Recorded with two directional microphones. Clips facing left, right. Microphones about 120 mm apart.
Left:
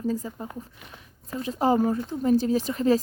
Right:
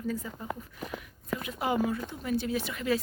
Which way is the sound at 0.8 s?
40° right (ahead or behind).